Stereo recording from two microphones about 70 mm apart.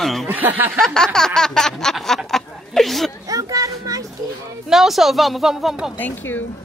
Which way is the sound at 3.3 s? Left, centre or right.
Right.